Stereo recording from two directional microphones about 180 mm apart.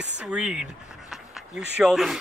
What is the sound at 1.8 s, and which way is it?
Speech, centre (ahead or behind).